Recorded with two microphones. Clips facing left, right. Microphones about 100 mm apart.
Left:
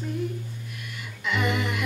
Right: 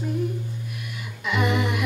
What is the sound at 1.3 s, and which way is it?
Music, 15° right (ahead or behind).